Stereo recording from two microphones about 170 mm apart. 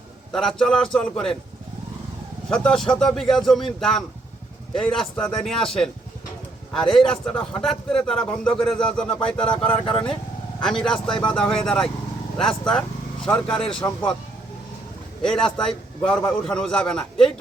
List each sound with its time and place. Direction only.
0.3 s a man's voice: 5° left (ahead or behind)
2.5 s a man's voice: 5° left (ahead or behind)
13.8 s speech: 20° left (ahead or behind)
15.2 s a man's voice: 5° left (ahead or behind)